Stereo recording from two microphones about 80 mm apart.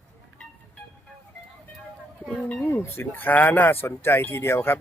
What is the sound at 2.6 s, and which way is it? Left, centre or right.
Speech, left.